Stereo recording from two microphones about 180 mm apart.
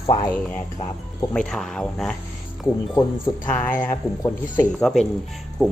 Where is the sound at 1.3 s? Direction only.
5° left (ahead or behind).